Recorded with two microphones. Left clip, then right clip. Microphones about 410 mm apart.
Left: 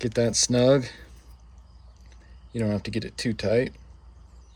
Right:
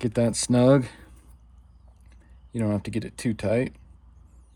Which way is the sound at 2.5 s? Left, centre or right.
Centre.